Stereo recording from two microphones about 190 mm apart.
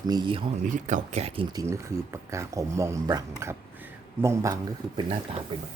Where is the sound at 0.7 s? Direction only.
40° right (ahead or behind).